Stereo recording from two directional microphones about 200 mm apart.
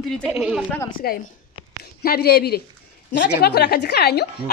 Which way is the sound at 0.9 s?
45° left (ahead or behind).